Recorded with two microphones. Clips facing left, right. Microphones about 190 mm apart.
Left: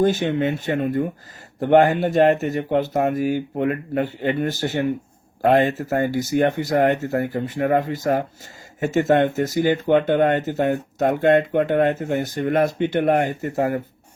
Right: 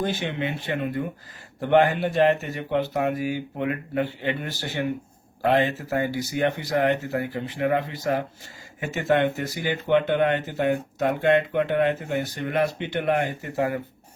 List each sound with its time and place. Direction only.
0.0 s speech: 45° left (ahead or behind)